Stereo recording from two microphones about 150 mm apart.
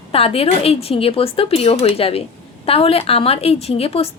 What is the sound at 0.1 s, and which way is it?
A woman's voice, 40° left (ahead or behind).